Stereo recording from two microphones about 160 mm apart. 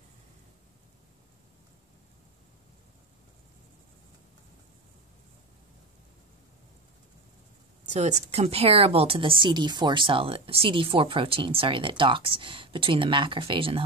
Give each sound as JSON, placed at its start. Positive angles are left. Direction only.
{"t": 7.8, "sound": "speech", "side_deg": -45}